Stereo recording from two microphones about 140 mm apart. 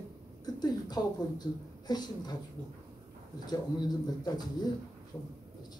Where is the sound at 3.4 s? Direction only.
30° left (ahead or behind).